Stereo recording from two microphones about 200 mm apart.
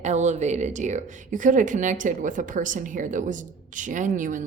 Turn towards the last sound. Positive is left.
turn(degrees=-40)  # may be behind; listen again after turning